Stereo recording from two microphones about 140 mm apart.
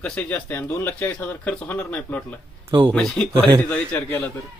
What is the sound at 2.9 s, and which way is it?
A man's voice, 5° left (ahead or behind).